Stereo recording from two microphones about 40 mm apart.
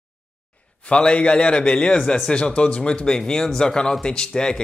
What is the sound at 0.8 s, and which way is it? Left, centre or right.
A man's voice, left.